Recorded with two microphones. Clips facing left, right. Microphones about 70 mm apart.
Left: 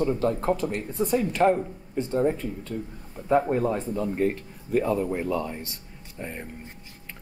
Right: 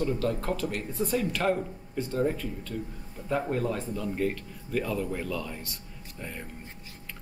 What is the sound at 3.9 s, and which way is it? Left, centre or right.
Speech, left.